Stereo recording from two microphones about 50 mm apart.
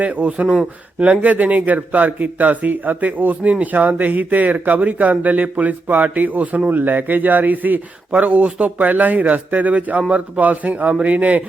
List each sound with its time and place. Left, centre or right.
0.0 s speech: right